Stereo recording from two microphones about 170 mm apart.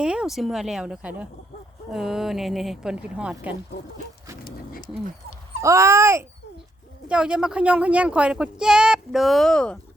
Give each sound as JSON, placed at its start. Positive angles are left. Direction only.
{"t": 0.0, "sound": "speech", "side_deg": -5}
{"t": 4.4, "sound": "a sound", "side_deg": 55}
{"t": 5.6, "sound": "a child's voice", "side_deg": -15}